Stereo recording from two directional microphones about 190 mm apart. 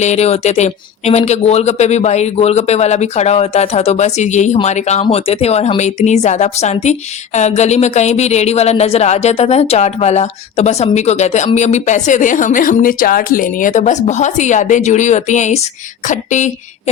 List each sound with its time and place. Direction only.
0.0 s speech: 35° left (ahead or behind)